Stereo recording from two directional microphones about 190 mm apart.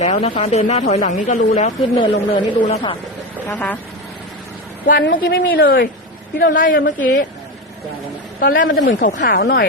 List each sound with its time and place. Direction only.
0.0 s speech: 35° left (ahead or behind)
3.5 s speech: 10° left (ahead or behind)
4.9 s speech: 50° left (ahead or behind)
6.4 s speech: 45° left (ahead or behind)
8.4 s speech: 45° left (ahead or behind)